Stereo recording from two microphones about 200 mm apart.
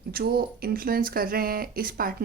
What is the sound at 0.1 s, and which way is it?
Speech, 50° right (ahead or behind).